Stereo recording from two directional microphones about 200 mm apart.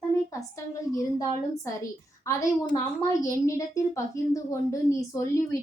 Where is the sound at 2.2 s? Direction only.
15° left (ahead or behind).